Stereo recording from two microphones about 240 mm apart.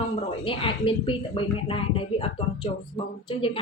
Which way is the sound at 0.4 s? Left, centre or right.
Left.